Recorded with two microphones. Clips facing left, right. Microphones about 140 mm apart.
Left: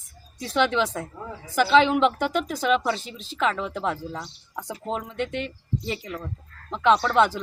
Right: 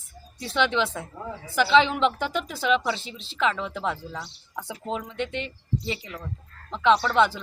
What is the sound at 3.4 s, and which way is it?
A woman's voice, centre (ahead or behind).